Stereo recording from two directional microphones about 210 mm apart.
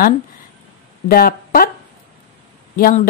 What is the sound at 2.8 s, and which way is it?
Speech, 40° left (ahead or behind).